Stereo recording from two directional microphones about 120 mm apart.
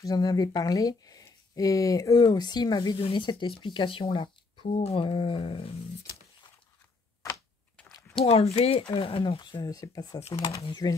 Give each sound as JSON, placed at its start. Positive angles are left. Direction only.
{"t": 0.0, "sound": "speech", "side_deg": 35}
{"t": 8.3, "sound": "speech", "side_deg": 55}